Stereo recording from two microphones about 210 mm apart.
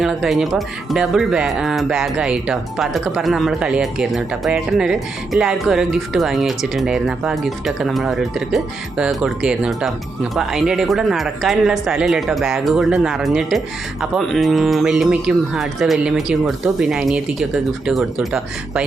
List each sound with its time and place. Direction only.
0.0 s speech: centre (ahead or behind)